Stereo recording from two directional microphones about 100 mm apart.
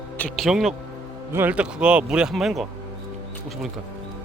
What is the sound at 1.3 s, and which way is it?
Speech, 15° right (ahead or behind).